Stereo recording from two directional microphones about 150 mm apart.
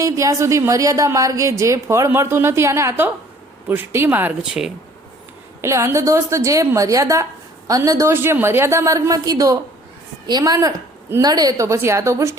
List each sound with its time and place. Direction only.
0.0 s a woman's voice: 20° right (ahead or behind); by 4.7 s 5° right (ahead or behind)
5.6 s a woman's voice: 20° right (ahead or behind)